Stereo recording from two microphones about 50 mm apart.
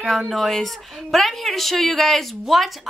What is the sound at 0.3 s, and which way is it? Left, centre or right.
Speech, centre.